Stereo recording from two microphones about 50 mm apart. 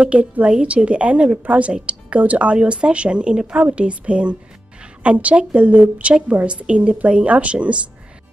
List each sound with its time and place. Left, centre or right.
0.0 s a woman's voice: right